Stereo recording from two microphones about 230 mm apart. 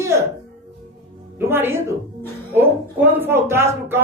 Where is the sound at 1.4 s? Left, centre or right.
Centre.